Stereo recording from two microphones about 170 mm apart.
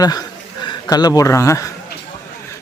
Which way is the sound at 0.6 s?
25° left (ahead or behind).